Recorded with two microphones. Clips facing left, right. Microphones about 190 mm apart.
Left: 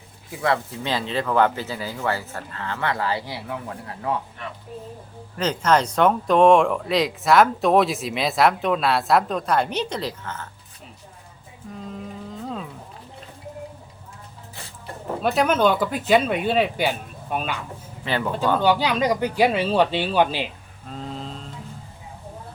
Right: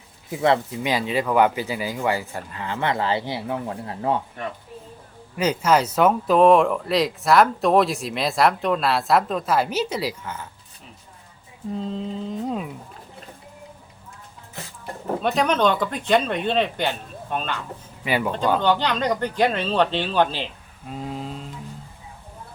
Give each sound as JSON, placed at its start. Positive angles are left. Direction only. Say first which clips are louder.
{"t": 0.3, "sound": "speech", "louder": "right 3 dB", "side_deg": -25}
{"t": 0.8, "sound": "speech", "louder": "right 2 dB", "side_deg": -10}
{"t": 5.4, "sound": "speech", "louder": "right 1 dB", "side_deg": -10}
{"t": 11.7, "sound": "a sound", "louder": "right 7 dB", "side_deg": -25}
{"t": 15.2, "sound": "speech", "louder": "left 1 dB", "side_deg": 5}
{"t": 18.0, "sound": "speech", "louder": "right 2 dB", "side_deg": -10}
{"t": 18.6, "sound": "speech", "louder": "left 1 dB", "side_deg": 10}
{"t": 20.8, "sound": "a sound", "louder": "right 2 dB", "side_deg": -10}